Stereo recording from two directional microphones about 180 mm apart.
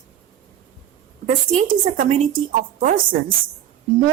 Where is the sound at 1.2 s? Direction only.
45° right (ahead or behind).